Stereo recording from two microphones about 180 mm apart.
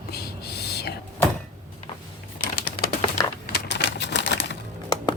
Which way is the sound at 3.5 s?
70° left (ahead or behind).